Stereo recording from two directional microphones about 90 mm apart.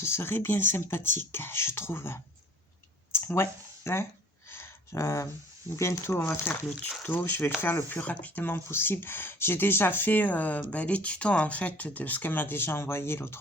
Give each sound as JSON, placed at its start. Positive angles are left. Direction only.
{"t": 0.0, "sound": "speech", "side_deg": 25}
{"t": 3.1, "sound": "a sound", "side_deg": 25}
{"t": 5.7, "sound": "speech", "side_deg": 35}
{"t": 6.5, "sound": "speech", "side_deg": 15}